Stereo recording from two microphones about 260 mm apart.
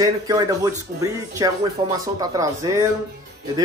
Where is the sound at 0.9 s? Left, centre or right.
Right.